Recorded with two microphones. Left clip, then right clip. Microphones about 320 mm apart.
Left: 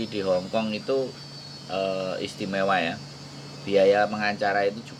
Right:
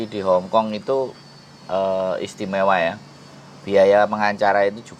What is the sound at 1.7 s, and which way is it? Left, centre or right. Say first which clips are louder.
Speech: right 7 dB; right.